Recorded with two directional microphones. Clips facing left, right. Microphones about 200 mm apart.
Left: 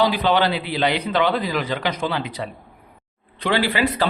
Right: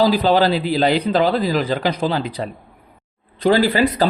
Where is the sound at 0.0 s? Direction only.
35° right (ahead or behind).